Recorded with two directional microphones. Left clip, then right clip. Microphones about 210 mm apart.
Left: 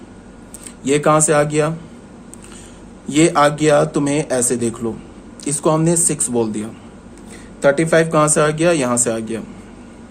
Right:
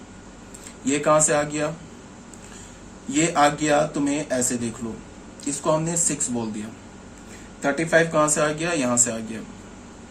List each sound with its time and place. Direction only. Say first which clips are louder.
0.9 s speech: left 5 dB; 55° left (ahead or behind)
3.1 s speech: left 6 dB; 55° left (ahead or behind)
7.6 s speech: left 6 dB; 55° left (ahead or behind)